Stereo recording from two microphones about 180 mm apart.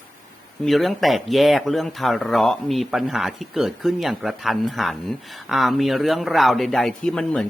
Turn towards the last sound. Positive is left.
turn(degrees=5)  # may be behind; listen again after turning